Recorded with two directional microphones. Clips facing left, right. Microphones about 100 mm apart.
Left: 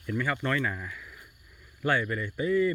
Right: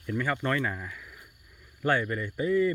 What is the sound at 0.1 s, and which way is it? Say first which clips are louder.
Speech: right 1 dB; 35° right (ahead or behind).